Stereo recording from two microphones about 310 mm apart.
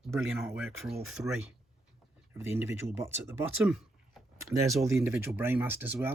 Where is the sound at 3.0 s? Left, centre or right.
Centre.